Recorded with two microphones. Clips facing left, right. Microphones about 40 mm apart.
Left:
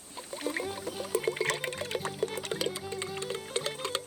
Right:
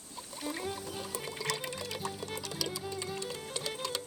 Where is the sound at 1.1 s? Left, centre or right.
Left.